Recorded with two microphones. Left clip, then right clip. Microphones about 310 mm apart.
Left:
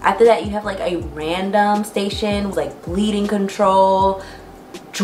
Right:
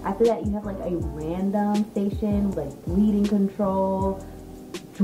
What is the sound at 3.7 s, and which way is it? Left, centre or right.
Music, left.